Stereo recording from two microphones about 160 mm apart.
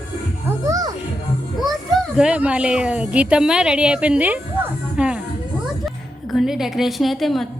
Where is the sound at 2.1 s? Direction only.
5° right (ahead or behind).